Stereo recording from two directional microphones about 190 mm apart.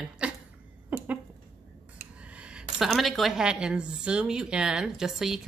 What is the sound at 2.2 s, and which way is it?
A woman's voice, 5° right (ahead or behind).